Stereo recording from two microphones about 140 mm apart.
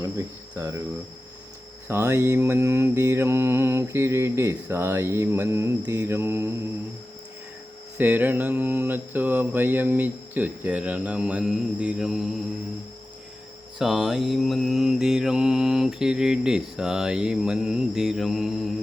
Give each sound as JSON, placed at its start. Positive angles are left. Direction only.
{"t": 0.5, "sound": "mantra", "side_deg": -25}
{"t": 1.9, "sound": "mantra", "side_deg": -20}
{"t": 7.9, "sound": "mantra", "side_deg": -10}
{"t": 13.7, "sound": "mantra", "side_deg": -5}